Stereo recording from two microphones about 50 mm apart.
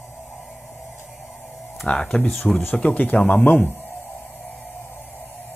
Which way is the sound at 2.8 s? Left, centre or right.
Left.